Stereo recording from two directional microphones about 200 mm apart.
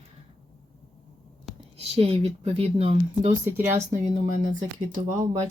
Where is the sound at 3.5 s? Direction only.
10° right (ahead or behind).